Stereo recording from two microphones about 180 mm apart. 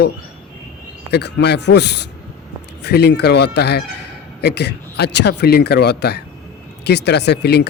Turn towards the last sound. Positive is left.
turn(degrees=65)  # may be behind; listen again after turning